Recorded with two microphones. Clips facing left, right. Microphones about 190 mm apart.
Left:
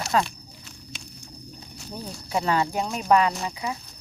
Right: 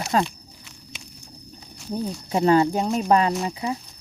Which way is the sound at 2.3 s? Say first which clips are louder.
Right 6 dB; 35° right (ahead or behind).